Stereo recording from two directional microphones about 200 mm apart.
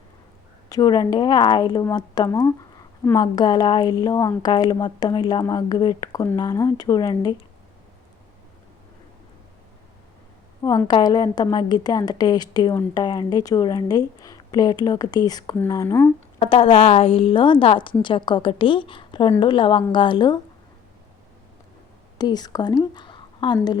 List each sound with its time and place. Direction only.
0.7 s a woman's voice: 20° left (ahead or behind)
10.6 s a woman's voice: 20° left (ahead or behind)
16.4 s a woman's voice: 25° left (ahead or behind)
22.2 s a woman's voice: 20° left (ahead or behind)